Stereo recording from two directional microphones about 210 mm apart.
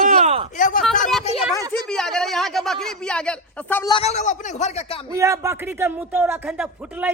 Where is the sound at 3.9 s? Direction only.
30° left (ahead or behind).